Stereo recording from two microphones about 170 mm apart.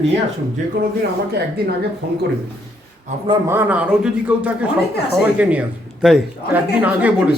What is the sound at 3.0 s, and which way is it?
Speech, 35° right (ahead or behind).